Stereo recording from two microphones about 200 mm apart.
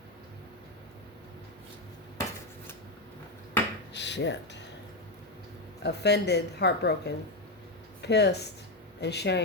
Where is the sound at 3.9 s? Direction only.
60° left (ahead or behind).